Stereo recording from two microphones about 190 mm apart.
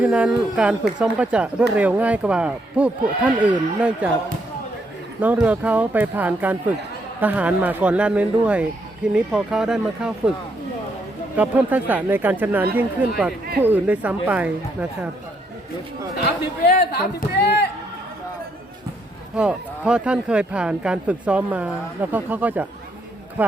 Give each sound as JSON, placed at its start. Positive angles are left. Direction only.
{"t": 0.0, "sound": "speech", "side_deg": -5}
{"t": 5.2, "sound": "speech", "side_deg": -10}
{"t": 11.3, "sound": "speech", "side_deg": -10}
{"t": 16.2, "sound": "a man's voice", "side_deg": 55}
{"t": 19.4, "sound": "speech", "side_deg": -5}